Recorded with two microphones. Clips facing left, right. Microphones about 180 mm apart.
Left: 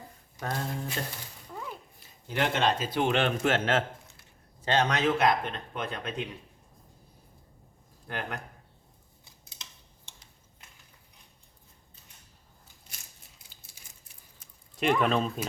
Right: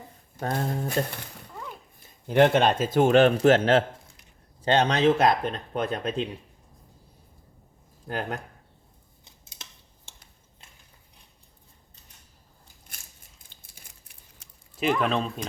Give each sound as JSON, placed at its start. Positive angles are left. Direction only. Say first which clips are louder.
{"t": 0.3, "sound": "a man's voice", "louder": "right 5 dB", "side_deg": -50}
{"t": 2.2, "sound": "a man's voice", "louder": "right 8 dB", "side_deg": -55}
{"t": 8.0, "sound": "speech", "louder": "right 5 dB", "side_deg": -35}
{"t": 13.5, "sound": "a sound", "louder": "right 1 dB", "side_deg": 5}
{"t": 14.4, "sound": "a sound", "louder": "right 1 dB", "side_deg": -85}
{"t": 14.8, "sound": "speech", "louder": "right 1 dB", "side_deg": 0}